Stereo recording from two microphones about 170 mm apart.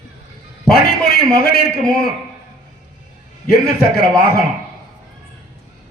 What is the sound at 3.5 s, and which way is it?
Speech, 65° left (ahead or behind).